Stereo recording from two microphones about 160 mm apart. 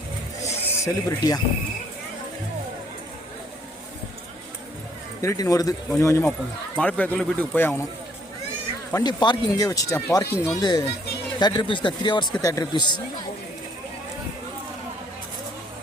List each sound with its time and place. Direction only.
0.4 s a sound: 20° left (ahead or behind)
5.2 s speech: 20° left (ahead or behind)
6.7 s speech: 5° left (ahead or behind)
8.9 s speech: 20° left (ahead or behind)